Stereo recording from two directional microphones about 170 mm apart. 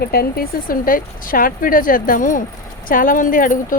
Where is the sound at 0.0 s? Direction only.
65° left (ahead or behind).